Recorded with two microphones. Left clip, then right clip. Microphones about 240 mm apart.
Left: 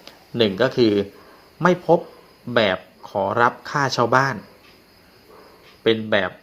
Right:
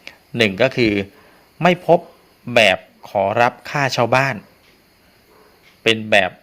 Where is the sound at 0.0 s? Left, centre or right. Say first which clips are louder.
Right 3 dB; right.